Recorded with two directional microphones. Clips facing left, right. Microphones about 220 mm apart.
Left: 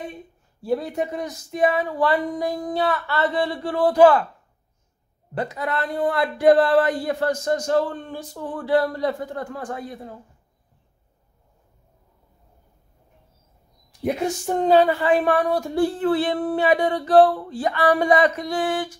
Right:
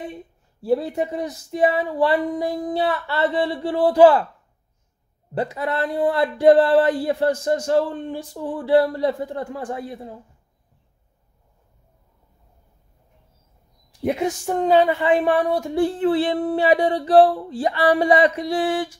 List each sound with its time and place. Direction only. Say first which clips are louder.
0.1 s speech: right 2 dB; 30° right (ahead or behind)
5.3 s a woman's voice: right 2 dB; 30° right (ahead or behind)
14.7 s speech: even; 20° right (ahead or behind)